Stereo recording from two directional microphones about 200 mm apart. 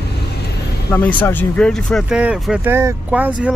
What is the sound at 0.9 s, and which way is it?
Speech, 10° left (ahead or behind).